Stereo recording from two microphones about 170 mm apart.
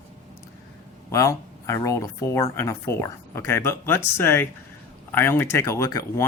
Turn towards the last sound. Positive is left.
turn(degrees=20)  # may be behind; listen again after turning